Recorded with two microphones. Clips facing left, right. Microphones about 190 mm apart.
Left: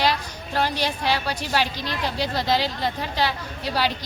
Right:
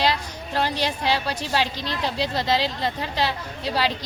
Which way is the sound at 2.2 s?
Centre (ahead or behind).